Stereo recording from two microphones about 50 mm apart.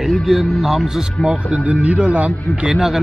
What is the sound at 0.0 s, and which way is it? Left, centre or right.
Speech, centre.